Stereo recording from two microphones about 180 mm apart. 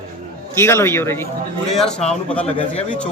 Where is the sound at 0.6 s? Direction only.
15° left (ahead or behind).